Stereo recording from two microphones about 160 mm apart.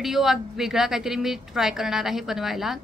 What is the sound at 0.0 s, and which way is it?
A woman's voice, centre (ahead or behind).